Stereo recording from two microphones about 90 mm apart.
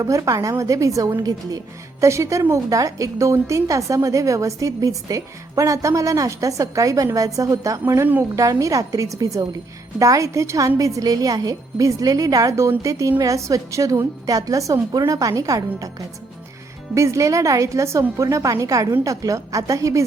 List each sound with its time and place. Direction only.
0.0 s speech: 35° right (ahead or behind)